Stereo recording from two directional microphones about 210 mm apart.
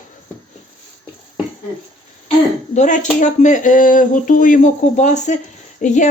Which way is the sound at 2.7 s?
35° left (ahead or behind).